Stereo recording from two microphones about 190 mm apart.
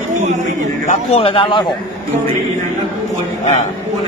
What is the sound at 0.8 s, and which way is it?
Speech, 30° left (ahead or behind).